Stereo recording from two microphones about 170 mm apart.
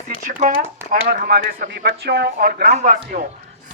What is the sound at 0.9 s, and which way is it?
Speech, 65° right (ahead or behind).